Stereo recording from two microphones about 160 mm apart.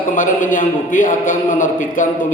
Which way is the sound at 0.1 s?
55° left (ahead or behind).